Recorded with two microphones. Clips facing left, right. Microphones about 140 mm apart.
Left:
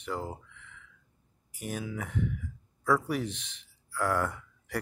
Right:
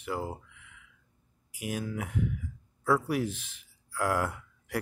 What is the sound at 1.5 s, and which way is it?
Speech, 10° right (ahead or behind).